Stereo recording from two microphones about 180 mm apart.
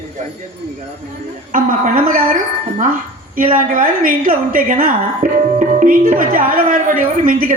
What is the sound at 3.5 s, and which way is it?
A woman's voice, 50° right (ahead or behind).